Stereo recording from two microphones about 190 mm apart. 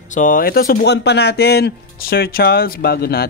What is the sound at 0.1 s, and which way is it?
Speech, 45° left (ahead or behind).